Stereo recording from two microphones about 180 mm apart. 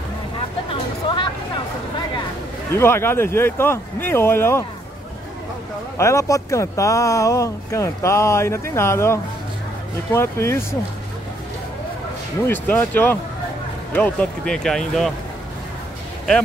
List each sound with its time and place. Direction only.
0.7 s vehicle: 25° left (ahead or behind)
2.7 s speech: 15° left (ahead or behind)
5.9 s speech: 15° left (ahead or behind)
12.4 s speech: 10° left (ahead or behind)